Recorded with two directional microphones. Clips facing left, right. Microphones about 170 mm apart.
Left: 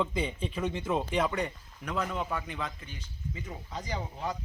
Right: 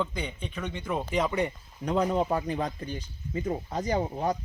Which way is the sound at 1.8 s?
30° right (ahead or behind).